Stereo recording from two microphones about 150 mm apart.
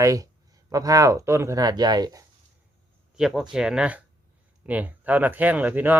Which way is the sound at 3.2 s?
Centre (ahead or behind).